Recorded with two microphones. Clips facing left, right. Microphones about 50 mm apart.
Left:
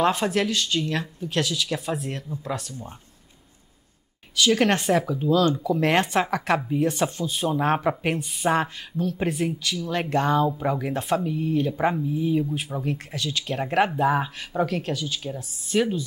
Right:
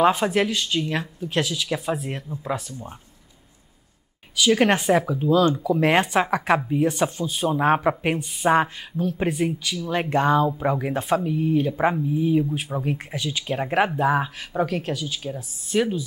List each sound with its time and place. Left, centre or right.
0.0 s speech: centre
4.4 s speech: centre